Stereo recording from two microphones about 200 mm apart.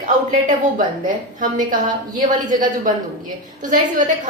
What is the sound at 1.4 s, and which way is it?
A woman's voice, 40° right (ahead or behind).